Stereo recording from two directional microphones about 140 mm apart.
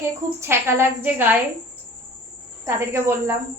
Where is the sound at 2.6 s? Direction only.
20° right (ahead or behind).